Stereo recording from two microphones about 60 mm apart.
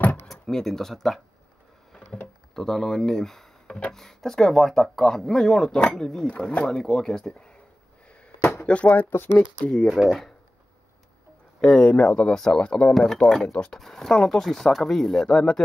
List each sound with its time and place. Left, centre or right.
0.3 s speech: centre
2.5 s speech: centre
8.4 s a sound: left
8.6 s speech: left
9.1 s speech: left
10.0 s speech: centre
11.6 s speech: centre
11.9 s speech: centre